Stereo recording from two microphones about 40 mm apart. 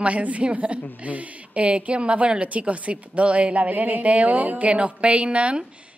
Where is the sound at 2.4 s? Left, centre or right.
Right.